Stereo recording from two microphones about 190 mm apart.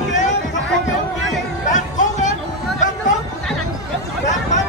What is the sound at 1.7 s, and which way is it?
Music, 40° left (ahead or behind).